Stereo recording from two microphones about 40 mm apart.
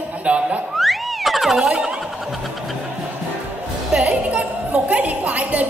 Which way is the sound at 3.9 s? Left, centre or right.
Right.